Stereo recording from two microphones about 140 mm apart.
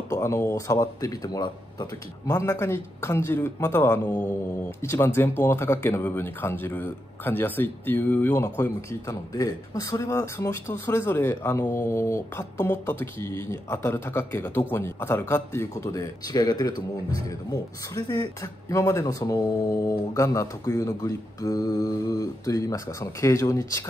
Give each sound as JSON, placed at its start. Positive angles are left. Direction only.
{"t": 0.1, "sound": "speech", "side_deg": 20}
{"t": 2.2, "sound": "speech", "side_deg": 20}